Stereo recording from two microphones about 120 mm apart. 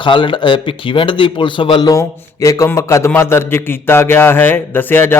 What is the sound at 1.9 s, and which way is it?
A man's voice, 30° left (ahead or behind).